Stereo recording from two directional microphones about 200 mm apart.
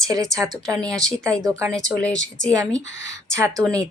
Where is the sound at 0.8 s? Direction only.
5° left (ahead or behind).